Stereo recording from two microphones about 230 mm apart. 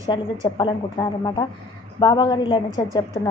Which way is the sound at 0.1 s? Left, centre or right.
Centre.